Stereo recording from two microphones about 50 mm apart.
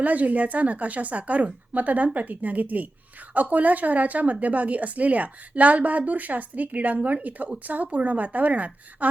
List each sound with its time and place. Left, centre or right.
0.0 s a woman's voice: right